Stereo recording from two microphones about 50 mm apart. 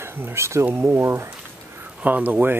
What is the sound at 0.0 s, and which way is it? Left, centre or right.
Speech, right.